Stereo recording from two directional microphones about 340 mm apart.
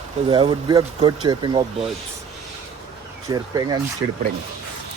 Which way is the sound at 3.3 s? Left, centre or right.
Centre.